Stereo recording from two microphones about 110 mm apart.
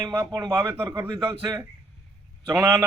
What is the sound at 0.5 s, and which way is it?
A man's voice, 20° right (ahead or behind).